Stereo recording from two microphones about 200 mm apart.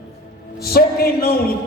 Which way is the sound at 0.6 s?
50° left (ahead or behind).